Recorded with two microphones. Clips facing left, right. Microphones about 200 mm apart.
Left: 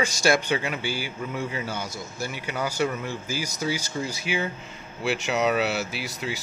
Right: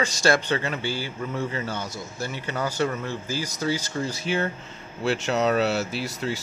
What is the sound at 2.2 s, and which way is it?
A man's voice, 10° left (ahead or behind).